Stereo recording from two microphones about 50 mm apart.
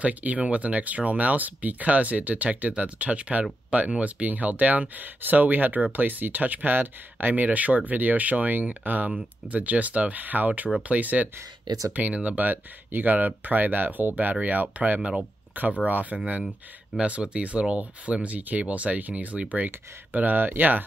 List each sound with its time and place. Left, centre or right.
0.0 s speech: right